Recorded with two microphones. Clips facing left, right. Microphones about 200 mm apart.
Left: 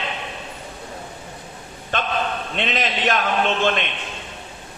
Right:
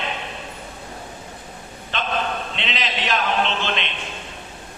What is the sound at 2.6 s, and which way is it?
A man's voice, 50° left (ahead or behind).